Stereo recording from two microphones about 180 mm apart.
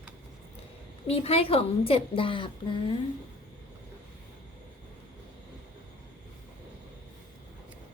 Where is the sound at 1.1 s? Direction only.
35° left (ahead or behind).